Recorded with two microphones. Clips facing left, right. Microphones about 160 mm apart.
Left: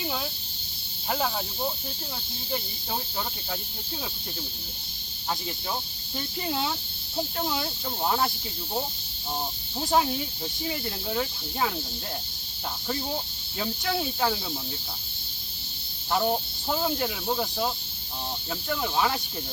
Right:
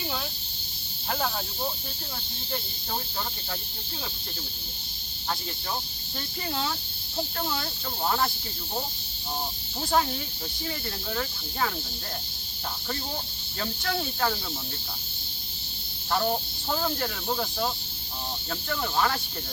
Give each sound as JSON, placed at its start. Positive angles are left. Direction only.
{"t": 1.1, "sound": "speech", "side_deg": 5}
{"t": 6.1, "sound": "speech", "side_deg": 15}
{"t": 9.8, "sound": "speech", "side_deg": 15}
{"t": 13.6, "sound": "speech", "side_deg": 10}
{"t": 16.1, "sound": "speech", "side_deg": 10}
{"t": 18.7, "sound": "speech", "side_deg": 10}